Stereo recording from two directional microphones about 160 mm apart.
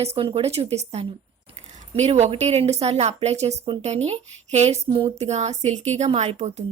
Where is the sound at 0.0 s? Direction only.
35° right (ahead or behind).